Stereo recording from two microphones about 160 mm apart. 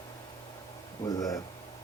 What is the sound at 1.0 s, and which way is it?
Speech, 20° left (ahead or behind).